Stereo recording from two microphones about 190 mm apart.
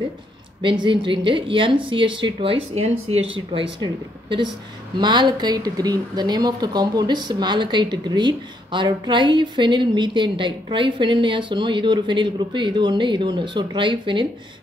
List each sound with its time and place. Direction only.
0.6 s speech: 25° right (ahead or behind)
4.9 s speech: 25° right (ahead or behind)